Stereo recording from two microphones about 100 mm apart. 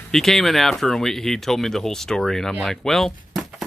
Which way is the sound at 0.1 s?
5° left (ahead or behind).